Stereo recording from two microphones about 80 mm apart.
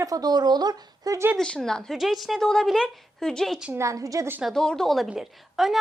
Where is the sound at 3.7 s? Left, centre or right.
Right.